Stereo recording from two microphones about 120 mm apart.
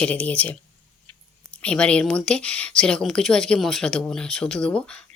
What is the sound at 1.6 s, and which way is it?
Speech, 10° left (ahead or behind).